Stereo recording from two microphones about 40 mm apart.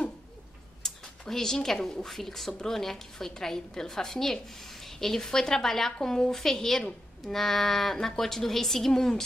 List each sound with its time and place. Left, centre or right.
0.8 s a sound: centre
1.3 s a woman's voice: centre
6.3 s a woman's voice: centre